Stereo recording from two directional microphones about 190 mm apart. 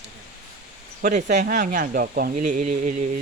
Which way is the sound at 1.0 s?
40° right (ahead or behind).